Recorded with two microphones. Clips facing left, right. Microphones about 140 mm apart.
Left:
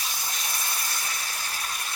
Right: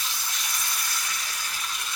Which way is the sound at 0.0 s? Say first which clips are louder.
Left 1 dB; 35° left (ahead or behind).